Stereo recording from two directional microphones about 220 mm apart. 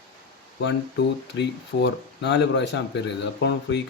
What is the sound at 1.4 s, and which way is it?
Speech, 55° left (ahead or behind).